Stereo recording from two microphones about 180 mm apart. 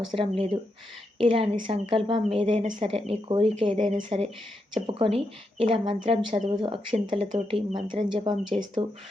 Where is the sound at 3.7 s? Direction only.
40° right (ahead or behind).